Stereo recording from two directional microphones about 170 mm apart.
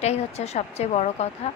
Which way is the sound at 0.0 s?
40° left (ahead or behind).